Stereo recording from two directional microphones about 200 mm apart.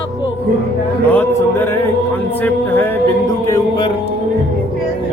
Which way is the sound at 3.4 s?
15° left (ahead or behind).